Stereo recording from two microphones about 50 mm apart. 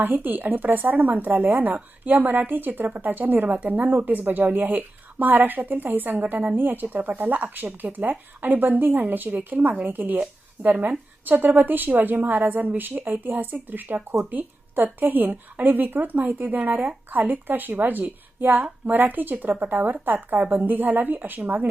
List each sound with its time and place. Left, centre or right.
0.0 s a woman's voice: right